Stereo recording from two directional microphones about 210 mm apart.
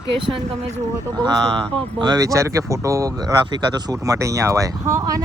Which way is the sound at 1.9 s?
20° right (ahead or behind).